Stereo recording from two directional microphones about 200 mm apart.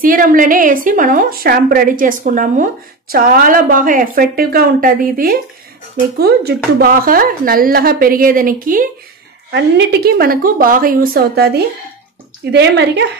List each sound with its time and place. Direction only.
0.0 s a woman's voice: 45° right (ahead or behind)
9.5 s a woman's voice: 55° right (ahead or behind)